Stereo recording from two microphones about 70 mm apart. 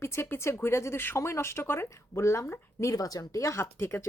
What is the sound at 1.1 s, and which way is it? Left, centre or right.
Speech, left.